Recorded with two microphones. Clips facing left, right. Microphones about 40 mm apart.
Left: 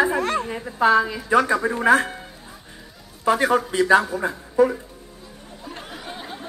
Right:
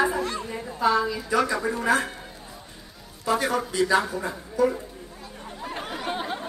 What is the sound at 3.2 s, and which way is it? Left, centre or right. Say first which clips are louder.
A man's voice: left 5 dB; left.